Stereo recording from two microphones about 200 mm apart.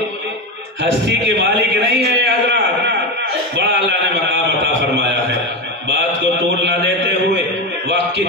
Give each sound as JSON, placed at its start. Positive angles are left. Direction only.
{"t": 1.4, "sound": "a man's voice", "side_deg": -55}